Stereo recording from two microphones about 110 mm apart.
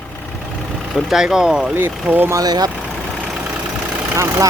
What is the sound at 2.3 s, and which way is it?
Speech, 35° right (ahead or behind).